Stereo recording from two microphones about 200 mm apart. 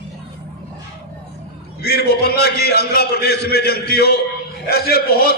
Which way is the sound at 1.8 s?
50° left (ahead or behind).